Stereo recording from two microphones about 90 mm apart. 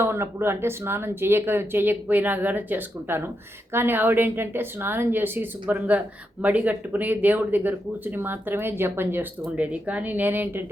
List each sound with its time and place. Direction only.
0.0 s speech: 25° right (ahead or behind)